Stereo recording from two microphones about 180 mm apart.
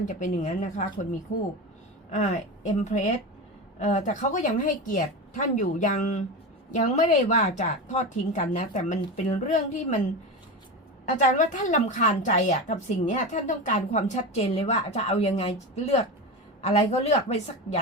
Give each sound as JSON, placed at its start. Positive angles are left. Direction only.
{"t": 0.0, "sound": "a woman's voice", "side_deg": 45}
{"t": 2.0, "sound": "a woman's voice", "side_deg": 40}
{"t": 11.0, "sound": "a woman's voice", "side_deg": 45}
{"t": 16.6, "sound": "a woman's voice", "side_deg": 35}